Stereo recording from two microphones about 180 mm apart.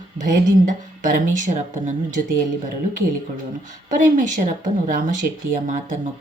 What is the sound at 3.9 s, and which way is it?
Speech, 45° right (ahead or behind).